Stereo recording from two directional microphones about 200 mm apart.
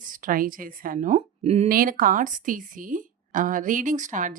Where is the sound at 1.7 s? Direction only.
45° right (ahead or behind).